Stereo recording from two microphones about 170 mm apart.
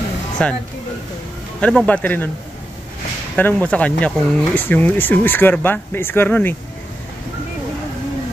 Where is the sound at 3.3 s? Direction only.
10° left (ahead or behind).